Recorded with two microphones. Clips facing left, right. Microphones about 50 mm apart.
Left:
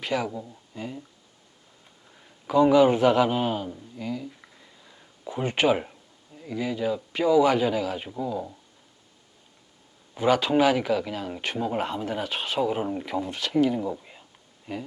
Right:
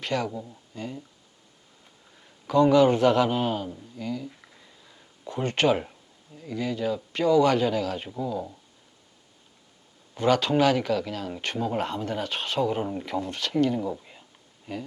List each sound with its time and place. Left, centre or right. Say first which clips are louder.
0.0 s speech: left 1 dB; centre
2.1 s a man's voice: even; centre
10.2 s speech: left 1 dB; centre